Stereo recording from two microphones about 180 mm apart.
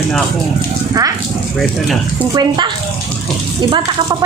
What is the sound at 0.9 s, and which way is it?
Speech, 20° right (ahead or behind).